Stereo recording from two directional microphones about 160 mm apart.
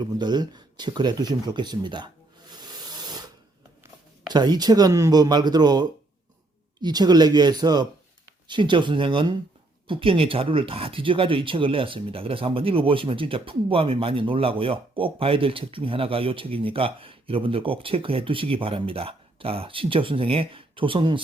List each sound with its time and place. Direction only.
0.0 s speech: 25° right (ahead or behind)
2.5 s a sound: 25° right (ahead or behind)
4.3 s speech: 25° right (ahead or behind)